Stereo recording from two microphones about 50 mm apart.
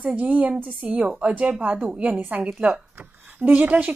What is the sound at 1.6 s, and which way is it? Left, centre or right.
A woman's voice, right.